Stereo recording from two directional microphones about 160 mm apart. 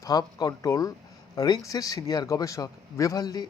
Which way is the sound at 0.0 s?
25° left (ahead or behind).